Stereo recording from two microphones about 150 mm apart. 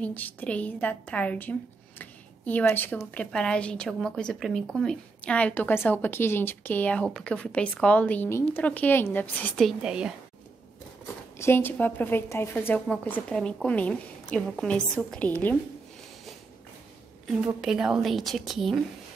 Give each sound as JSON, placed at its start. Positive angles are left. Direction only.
{"t": 0.0, "sound": "a woman's voice", "side_deg": 10}
{"t": 9.7, "sound": "a woman's voice", "side_deg": -5}
{"t": 11.3, "sound": "a woman's voice", "side_deg": 15}
{"t": 17.6, "sound": "a woman's voice", "side_deg": -5}